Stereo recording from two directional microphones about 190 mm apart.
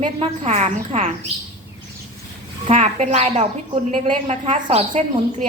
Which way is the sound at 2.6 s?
35° right (ahead or behind).